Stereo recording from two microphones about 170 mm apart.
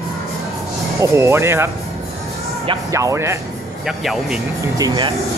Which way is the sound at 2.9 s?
20° right (ahead or behind).